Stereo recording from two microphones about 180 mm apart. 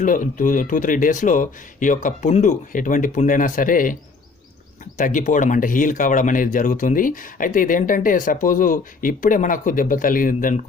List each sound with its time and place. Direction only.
0.0 s speech: 45° left (ahead or behind)
4.9 s speech: 45° left (ahead or behind)